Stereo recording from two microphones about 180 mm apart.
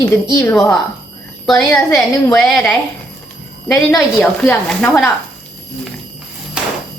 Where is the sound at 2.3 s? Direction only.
5° left (ahead or behind).